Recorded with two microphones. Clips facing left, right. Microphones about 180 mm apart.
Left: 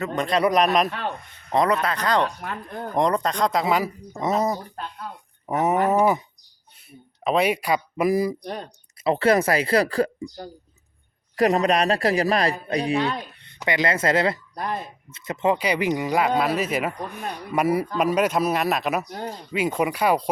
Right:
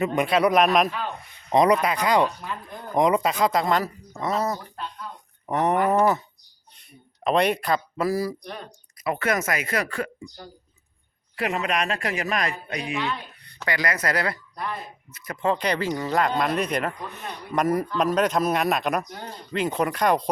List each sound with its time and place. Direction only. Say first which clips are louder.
0.2 s speech: even; 5° right (ahead or behind)
0.9 s speech: left 1 dB; 65° left (ahead or behind)
1.5 s speech: right 2 dB; 15° right (ahead or behind)
2.4 s speech: left 3 dB; 65° left (ahead or behind)
2.9 s speech: right 1 dB; 5° right (ahead or behind)
4.2 s speech: left 3 dB; 20° left (ahead or behind)
5.1 s a sound: left 1 dB; 10° left (ahead or behind)
5.9 s speech: left 1 dB; 10° left (ahead or behind)
7.3 s speech: even; 5° left (ahead or behind)
8.4 s speech: left 5 dB; 35° left (ahead or behind)
13.4 s speech: left 4 dB; 20° left (ahead or behind)
14.5 s speech: left 3 dB; 45° left (ahead or behind)
15.1 s speech: left 3 dB; 25° left (ahead or behind)
15.5 s speech: left 2 dB; 10° left (ahead or behind)